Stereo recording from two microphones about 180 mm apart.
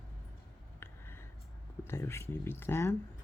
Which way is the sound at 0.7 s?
15° left (ahead or behind).